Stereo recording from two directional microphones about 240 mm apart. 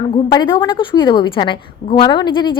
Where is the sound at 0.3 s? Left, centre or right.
Centre.